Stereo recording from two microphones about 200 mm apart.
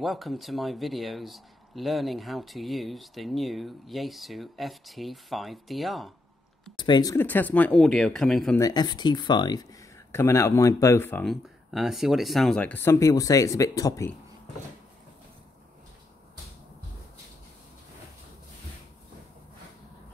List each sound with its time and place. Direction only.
0.0 s speech: centre (ahead or behind)
6.8 s speech: 20° left (ahead or behind); by 8.5 s centre (ahead or behind)
8.5 s speech: 20° left (ahead or behind)
11.4 s speech: centre (ahead or behind); by 14.1 s 15° left (ahead or behind)